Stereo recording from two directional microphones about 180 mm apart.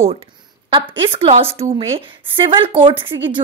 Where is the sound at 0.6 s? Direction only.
30° right (ahead or behind).